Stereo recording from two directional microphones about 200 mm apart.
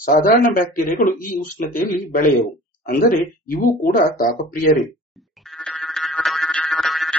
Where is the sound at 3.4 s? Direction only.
45° left (ahead or behind).